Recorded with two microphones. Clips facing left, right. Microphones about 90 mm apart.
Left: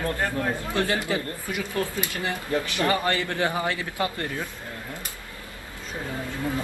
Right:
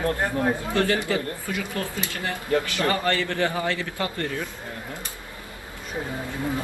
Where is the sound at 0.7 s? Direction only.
20° left (ahead or behind).